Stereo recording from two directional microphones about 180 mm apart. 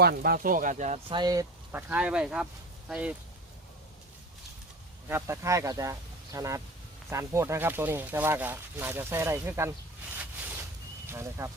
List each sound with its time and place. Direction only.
0.0 s speech: 60° right (ahead or behind); by 1.0 s 40° right (ahead or behind)
1.1 s speech: 20° right (ahead or behind)
5.0 s speech: 15° right (ahead or behind)
11.0 s speech: 15° right (ahead or behind)